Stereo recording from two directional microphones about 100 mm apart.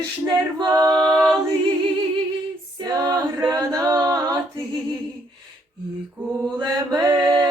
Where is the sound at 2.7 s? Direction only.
40° right (ahead or behind).